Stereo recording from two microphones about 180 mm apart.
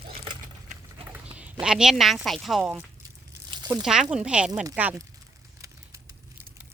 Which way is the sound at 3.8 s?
5° right (ahead or behind).